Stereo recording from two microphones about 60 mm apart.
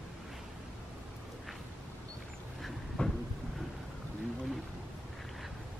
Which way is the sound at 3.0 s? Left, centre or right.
Centre.